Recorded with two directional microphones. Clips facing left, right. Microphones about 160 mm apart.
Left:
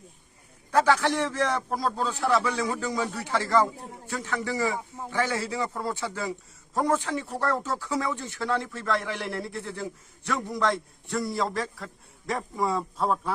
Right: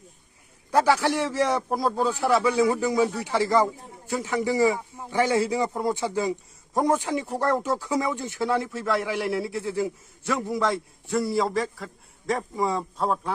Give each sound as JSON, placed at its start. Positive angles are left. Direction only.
{"t": 0.7, "sound": "a man's voice", "side_deg": -10}